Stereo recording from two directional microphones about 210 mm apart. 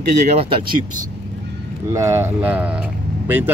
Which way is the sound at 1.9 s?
15° right (ahead or behind).